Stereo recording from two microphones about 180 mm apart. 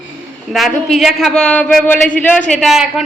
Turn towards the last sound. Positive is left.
turn(degrees=0)  # may be behind; listen again after turning